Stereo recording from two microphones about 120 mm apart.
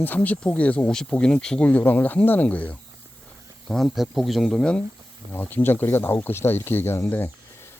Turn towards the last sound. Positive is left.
turn(degrees=15)  # may be behind; listen again after turning